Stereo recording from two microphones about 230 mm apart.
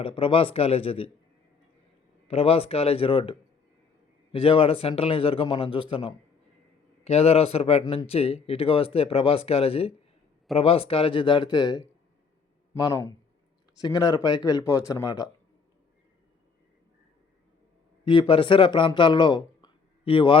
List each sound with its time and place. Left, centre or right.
0.0 s a man's voice: left
2.2 s a man's voice: left
18.0 s speech: left